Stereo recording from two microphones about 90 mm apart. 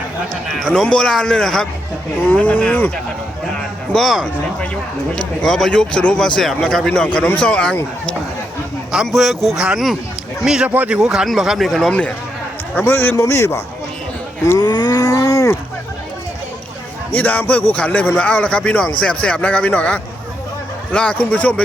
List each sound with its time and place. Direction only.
0.5 s speech: 5° left (ahead or behind)
2.2 s speech: 15° left (ahead or behind)
3.9 s speech: 5° left (ahead or behind)
8.9 s speech: 5° right (ahead or behind)
12.7 s a man's voice: 20° left (ahead or behind)
14.6 s cattle: 50° left (ahead or behind)
17.2 s speech: 15° left (ahead or behind)